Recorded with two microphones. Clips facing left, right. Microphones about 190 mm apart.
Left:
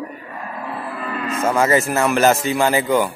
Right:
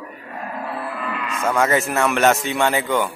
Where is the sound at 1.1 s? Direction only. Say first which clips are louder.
Left 3 dB; 35° left (ahead or behind).